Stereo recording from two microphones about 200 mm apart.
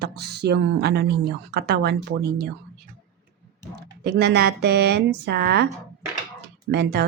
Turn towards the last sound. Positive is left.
turn(degrees=-55)  # may be behind; listen again after turning